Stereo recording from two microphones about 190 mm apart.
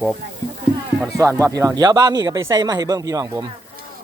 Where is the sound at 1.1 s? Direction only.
15° right (ahead or behind).